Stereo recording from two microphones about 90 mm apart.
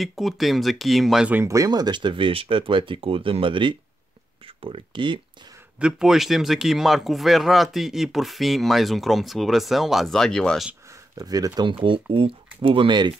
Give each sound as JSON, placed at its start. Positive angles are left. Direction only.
{"t": 0.0, "sound": "speech", "side_deg": 0}
{"t": 1.4, "sound": "speech", "side_deg": -35}
{"t": 1.7, "sound": "speech", "side_deg": -55}
{"t": 4.6, "sound": "speech", "side_deg": -80}
{"t": 5.8, "sound": "speech", "side_deg": -10}
{"t": 11.1, "sound": "speech", "side_deg": -40}
{"t": 11.8, "sound": "speech", "side_deg": -75}